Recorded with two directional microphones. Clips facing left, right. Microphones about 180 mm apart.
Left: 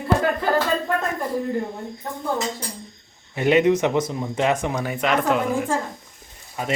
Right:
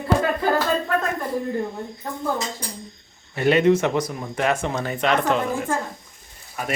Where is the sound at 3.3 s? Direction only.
15° left (ahead or behind).